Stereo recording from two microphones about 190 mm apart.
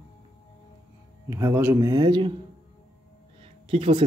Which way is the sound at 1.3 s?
15° right (ahead or behind).